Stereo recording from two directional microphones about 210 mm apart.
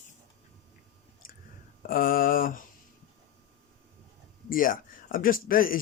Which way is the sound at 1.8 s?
40° left (ahead or behind).